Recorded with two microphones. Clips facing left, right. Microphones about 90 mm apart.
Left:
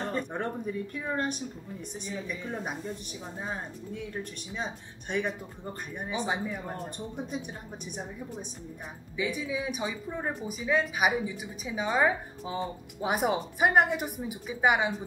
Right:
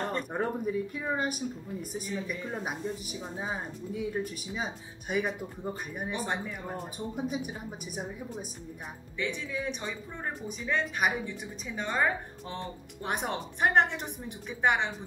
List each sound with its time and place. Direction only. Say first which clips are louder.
0.0 s speech: right 1 dB; 5° right (ahead or behind)
9.1 s speech: left 3 dB; 5° left (ahead or behind)